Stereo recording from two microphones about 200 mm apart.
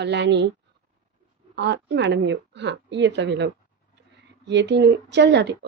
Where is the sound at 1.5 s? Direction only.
60° right (ahead or behind).